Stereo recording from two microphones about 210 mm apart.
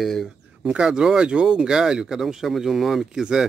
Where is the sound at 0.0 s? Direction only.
Centre (ahead or behind).